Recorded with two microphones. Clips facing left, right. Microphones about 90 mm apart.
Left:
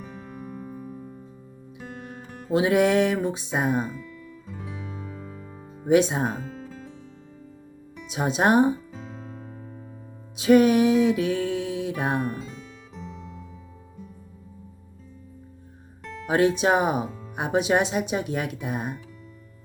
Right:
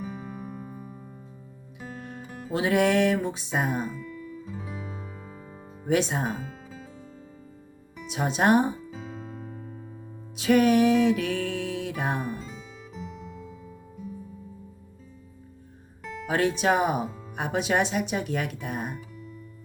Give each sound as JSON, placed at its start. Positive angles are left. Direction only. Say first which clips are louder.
{"t": 0.0, "sound": "music", "louder": "right 2 dB", "side_deg": -5}
{"t": 2.0, "sound": "music", "louder": "even", "side_deg": 10}
{"t": 2.2, "sound": "music", "louder": "right 1 dB", "side_deg": 0}
{"t": 2.5, "sound": "music", "louder": "left 3 dB", "side_deg": 20}
{"t": 3.9, "sound": "music", "louder": "right 3 dB", "side_deg": 0}
{"t": 5.8, "sound": "music", "louder": "left 5 dB", "side_deg": 20}
{"t": 6.4, "sound": "music", "louder": "left 3 dB", "side_deg": -5}
{"t": 8.0, "sound": "music", "louder": "left 1 dB", "side_deg": 20}
{"t": 8.9, "sound": "piano", "louder": "right 1 dB", "side_deg": 0}
{"t": 10.3, "sound": "music", "louder": "left 3 dB", "side_deg": 20}
{"t": 12.3, "sound": "music", "louder": "left 1 dB", "side_deg": 0}
{"t": 16.2, "sound": "music", "louder": "left 3 dB", "side_deg": 20}
{"t": 17.1, "sound": "music", "louder": "left 2 dB", "side_deg": -5}
{"t": 17.3, "sound": "music", "louder": "left 3 dB", "side_deg": 20}